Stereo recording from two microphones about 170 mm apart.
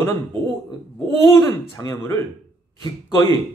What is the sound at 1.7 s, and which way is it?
Speech, 20° left (ahead or behind).